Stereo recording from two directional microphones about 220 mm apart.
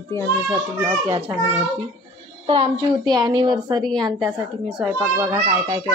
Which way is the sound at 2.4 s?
20° right (ahead or behind).